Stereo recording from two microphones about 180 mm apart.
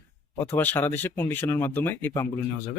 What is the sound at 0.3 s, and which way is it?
Speech, 10° left (ahead or behind).